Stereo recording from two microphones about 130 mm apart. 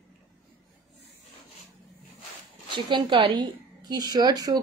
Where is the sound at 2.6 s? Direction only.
40° right (ahead or behind).